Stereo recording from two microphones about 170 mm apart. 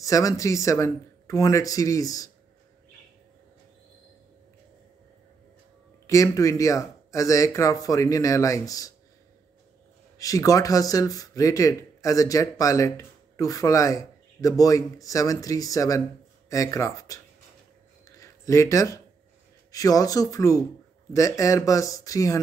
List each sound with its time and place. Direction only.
0.0 s speech: 20° left (ahead or behind)
6.0 s speech: 20° left (ahead or behind)
10.1 s speech: 20° left (ahead or behind)
18.0 s a sound: 20° left (ahead or behind)
19.7 s speech: 20° left (ahead or behind)